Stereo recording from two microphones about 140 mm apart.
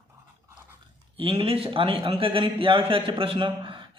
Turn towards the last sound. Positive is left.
turn(degrees=-35)  # may be behind; listen again after turning